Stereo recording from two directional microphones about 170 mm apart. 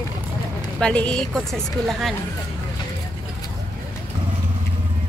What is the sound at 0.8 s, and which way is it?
A woman's voice, 5° left (ahead or behind).